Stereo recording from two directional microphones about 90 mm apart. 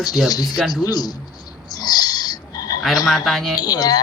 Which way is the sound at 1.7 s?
45° left (ahead or behind).